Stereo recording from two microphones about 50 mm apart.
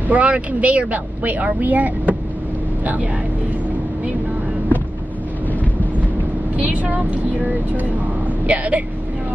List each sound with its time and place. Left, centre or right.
0.1 s speech: right
5.5 s vehicle: left
6.5 s speech: right